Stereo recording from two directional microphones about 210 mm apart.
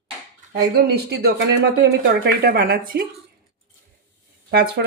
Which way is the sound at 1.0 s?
50° right (ahead or behind).